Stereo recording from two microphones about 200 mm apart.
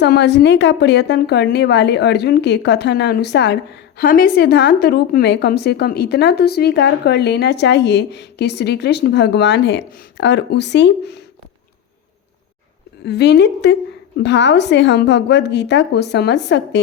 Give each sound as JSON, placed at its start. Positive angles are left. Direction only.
{"t": 0.0, "sound": "a woman's voice", "side_deg": 60}
{"t": 13.1, "sound": "a woman's voice", "side_deg": 55}